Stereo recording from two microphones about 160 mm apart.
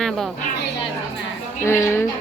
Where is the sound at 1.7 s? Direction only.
15° left (ahead or behind).